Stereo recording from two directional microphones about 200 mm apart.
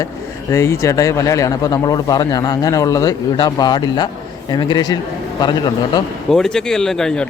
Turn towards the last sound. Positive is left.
turn(degrees=5)  # may be behind; listen again after turning